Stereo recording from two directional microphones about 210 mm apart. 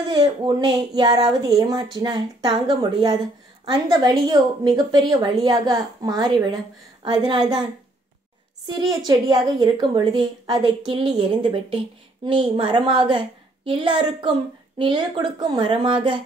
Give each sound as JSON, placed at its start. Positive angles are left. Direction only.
{"t": 0.1, "sound": "a woman's voice", "side_deg": -20}
{"t": 8.6, "sound": "a woman's voice", "side_deg": -20}